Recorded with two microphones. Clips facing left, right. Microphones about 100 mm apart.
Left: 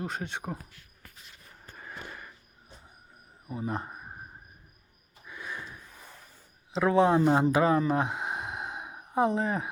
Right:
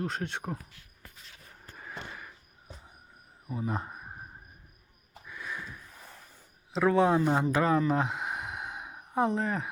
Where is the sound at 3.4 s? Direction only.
Centre (ahead or behind).